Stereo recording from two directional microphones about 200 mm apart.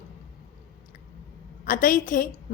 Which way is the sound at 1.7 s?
45° left (ahead or behind).